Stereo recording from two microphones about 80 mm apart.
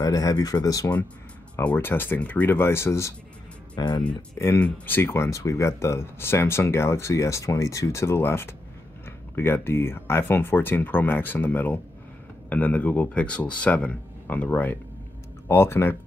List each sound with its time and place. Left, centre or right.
0.0 s speech: left
1.8 s speech: left
3.7 s speech: left
4.6 s speech: left